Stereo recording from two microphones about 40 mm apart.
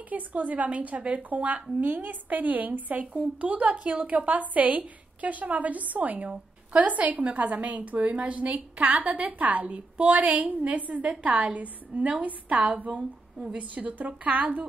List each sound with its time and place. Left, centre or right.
0.1 s a woman's voice: right
1.8 s a woman's voice: right
3.8 s a woman's voice: right